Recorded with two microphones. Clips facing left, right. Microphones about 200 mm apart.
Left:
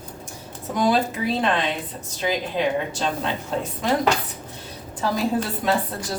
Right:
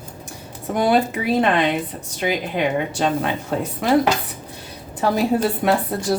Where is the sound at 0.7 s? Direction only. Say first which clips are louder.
Right 3 dB; 60° right (ahead or behind).